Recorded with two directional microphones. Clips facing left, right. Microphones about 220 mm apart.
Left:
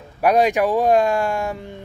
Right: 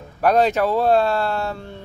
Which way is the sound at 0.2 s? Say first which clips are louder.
Left 1 dB; 15° left (ahead or behind).